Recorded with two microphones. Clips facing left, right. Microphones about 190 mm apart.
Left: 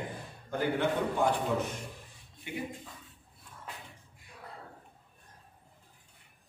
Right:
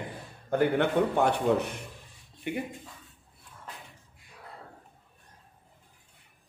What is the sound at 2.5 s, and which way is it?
Speech, 60° right (ahead or behind).